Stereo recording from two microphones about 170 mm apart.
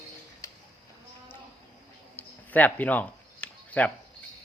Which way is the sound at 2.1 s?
10° left (ahead or behind).